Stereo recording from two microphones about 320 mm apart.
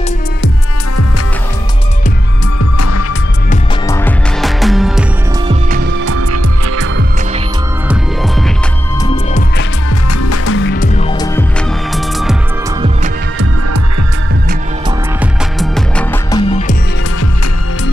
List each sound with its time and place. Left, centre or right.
2.6 s music: left
3.8 s music: centre
5.5 s music: right
6.0 s music: right
9.0 s music: centre
10.2 s music: left; by 11.4 s centre
15.6 s music: centre